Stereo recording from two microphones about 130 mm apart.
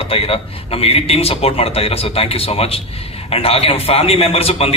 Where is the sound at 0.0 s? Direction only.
50° left (ahead or behind).